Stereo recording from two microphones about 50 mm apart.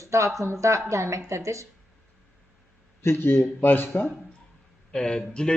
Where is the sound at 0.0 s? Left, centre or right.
Right.